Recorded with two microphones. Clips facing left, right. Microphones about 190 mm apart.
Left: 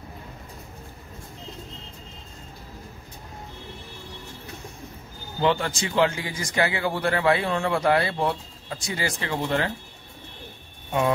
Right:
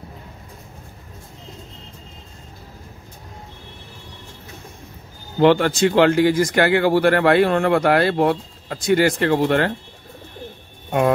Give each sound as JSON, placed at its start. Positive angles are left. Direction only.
{"t": 5.4, "sound": "speech", "side_deg": -65}